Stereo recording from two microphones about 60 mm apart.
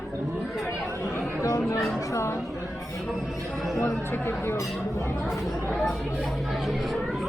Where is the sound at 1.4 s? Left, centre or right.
Left.